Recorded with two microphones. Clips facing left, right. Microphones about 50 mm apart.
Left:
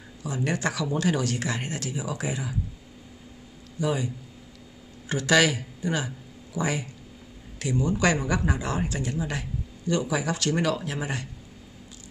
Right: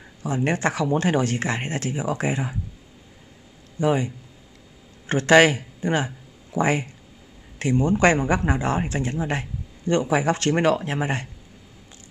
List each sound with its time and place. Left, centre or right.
0.2 s speech: right
3.8 s speech: right